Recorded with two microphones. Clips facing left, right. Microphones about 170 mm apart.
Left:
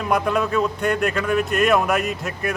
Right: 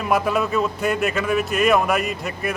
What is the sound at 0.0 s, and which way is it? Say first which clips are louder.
Speech: even; 5° right (ahead or behind).